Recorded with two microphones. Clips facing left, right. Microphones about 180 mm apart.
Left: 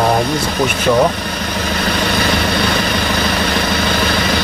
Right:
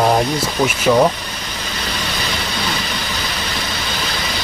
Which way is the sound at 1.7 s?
60° left (ahead or behind).